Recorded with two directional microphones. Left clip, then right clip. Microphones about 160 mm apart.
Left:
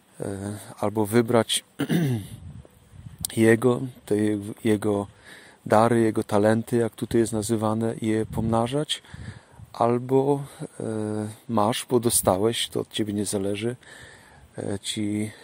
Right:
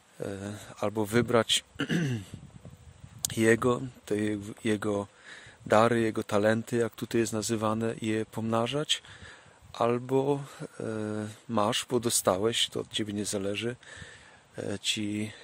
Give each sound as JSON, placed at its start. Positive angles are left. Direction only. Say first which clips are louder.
{"t": 0.2, "sound": "speech", "louder": "left 4 dB", "side_deg": -20}
{"t": 3.3, "sound": "speech", "louder": "left 5 dB", "side_deg": -15}